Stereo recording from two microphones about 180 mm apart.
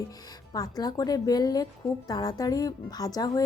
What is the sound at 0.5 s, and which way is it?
A woman's voice, 20° left (ahead or behind).